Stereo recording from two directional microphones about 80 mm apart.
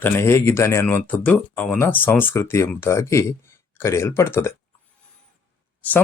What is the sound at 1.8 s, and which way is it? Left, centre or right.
Speech, left.